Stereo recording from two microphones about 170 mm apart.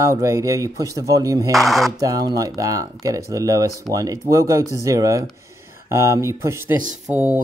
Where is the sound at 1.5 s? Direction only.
Centre (ahead or behind).